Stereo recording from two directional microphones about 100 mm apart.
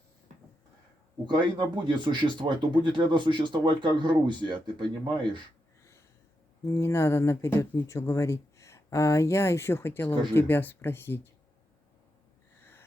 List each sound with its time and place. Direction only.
1.2 s speech: 50° right (ahead or behind)
6.7 s speech: 25° left (ahead or behind)
12.5 s gasp: 20° left (ahead or behind)